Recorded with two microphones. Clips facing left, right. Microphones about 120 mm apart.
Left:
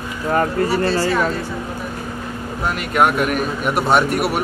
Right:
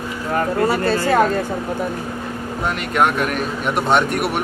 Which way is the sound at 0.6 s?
50° right (ahead or behind).